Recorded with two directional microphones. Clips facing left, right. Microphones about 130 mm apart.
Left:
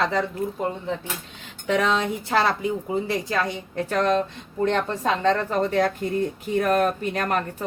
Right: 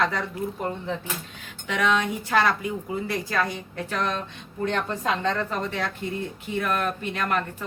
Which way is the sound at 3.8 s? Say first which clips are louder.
Left 7 dB; 40° left (ahead or behind).